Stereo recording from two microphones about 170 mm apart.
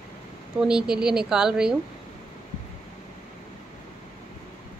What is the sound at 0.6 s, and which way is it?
Speech, 5° right (ahead or behind).